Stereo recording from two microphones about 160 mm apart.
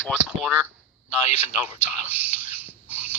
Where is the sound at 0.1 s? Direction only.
5° right (ahead or behind).